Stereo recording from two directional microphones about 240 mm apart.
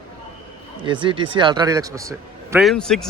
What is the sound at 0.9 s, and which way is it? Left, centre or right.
Speech, right.